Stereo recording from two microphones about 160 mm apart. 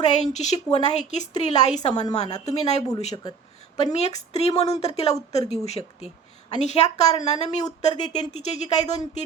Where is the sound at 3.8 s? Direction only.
45° left (ahead or behind).